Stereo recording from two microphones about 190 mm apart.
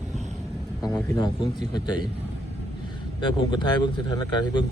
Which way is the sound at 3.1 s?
25° left (ahead or behind).